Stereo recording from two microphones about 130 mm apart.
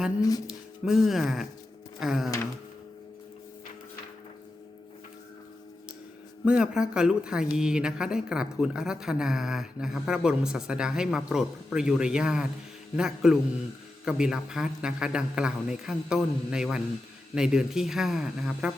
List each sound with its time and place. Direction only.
0.2 s speech: 25° left (ahead or behind)
0.4 s a woman's voice: 5° right (ahead or behind)
6.4 s a woman's voice: 5° right (ahead or behind)